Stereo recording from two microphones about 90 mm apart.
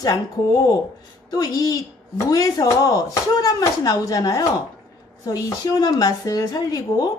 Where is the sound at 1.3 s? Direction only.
45° left (ahead or behind).